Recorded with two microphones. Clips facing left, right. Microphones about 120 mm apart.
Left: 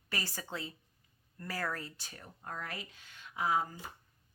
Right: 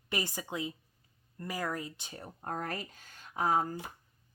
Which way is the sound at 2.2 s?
45° right (ahead or behind).